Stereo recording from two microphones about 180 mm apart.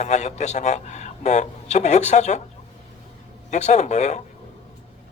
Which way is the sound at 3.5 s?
40° left (ahead or behind).